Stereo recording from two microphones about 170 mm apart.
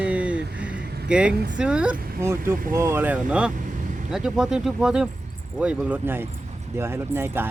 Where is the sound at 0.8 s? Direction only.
70° right (ahead or behind).